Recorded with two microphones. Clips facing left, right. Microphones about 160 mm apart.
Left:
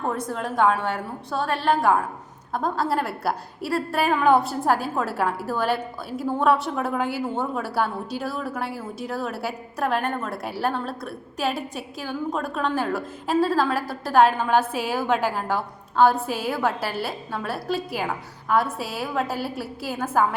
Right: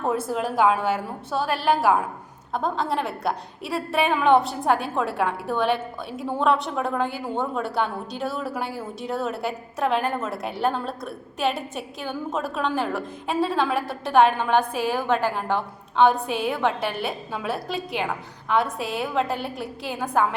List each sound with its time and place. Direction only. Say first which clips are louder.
0.0 s a woman's voice: right 3 dB; 5° right (ahead or behind)